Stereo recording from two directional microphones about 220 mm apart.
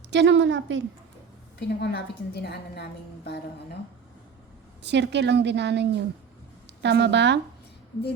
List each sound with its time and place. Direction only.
0.1 s a woman's voice: 55° right (ahead or behind)
1.5 s a woman's voice: 50° left (ahead or behind)
4.8 s a woman's voice: 50° right (ahead or behind)